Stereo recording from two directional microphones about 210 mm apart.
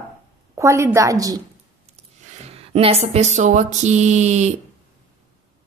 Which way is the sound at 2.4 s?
30° right (ahead or behind).